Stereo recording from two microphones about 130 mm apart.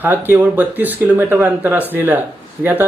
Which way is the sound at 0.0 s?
15° right (ahead or behind).